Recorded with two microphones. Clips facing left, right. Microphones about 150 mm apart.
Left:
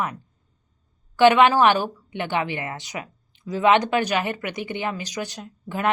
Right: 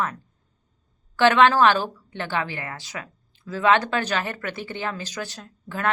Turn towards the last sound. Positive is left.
turn(degrees=15)  # may be behind; listen again after turning